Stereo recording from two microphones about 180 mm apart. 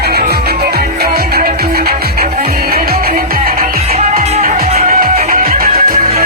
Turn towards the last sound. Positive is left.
turn(degrees=-55)  # may be behind; listen again after turning